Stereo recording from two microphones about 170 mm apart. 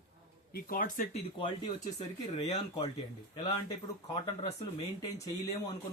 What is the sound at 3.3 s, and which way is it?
Speech, 20° left (ahead or behind).